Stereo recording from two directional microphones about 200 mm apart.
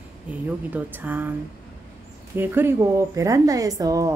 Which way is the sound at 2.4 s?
10° right (ahead or behind).